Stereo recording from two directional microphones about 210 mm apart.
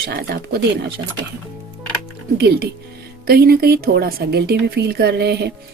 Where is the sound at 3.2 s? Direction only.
50° right (ahead or behind).